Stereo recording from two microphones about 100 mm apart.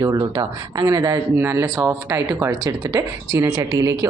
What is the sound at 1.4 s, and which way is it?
Speech, 25° right (ahead or behind).